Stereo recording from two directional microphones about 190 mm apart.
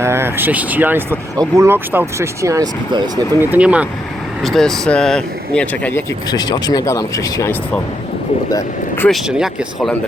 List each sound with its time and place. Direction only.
0.0 s speech: 15° right (ahead or behind)
3.5 s speech: 5° right (ahead or behind)
6.3 s speech: 20° left (ahead or behind)
9.0 s speech: centre (ahead or behind)